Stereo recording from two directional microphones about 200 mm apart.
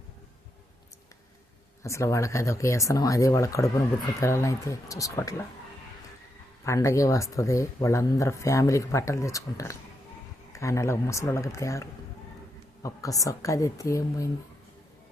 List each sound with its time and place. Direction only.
1.8 s speech: 15° left (ahead or behind)
6.7 s speech: 15° left (ahead or behind)